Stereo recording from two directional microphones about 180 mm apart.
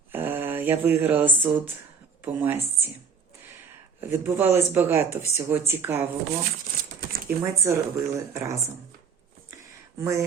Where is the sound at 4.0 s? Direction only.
15° right (ahead or behind).